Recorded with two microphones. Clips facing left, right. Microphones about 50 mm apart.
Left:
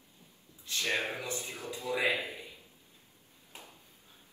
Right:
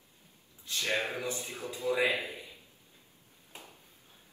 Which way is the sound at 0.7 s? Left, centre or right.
Left.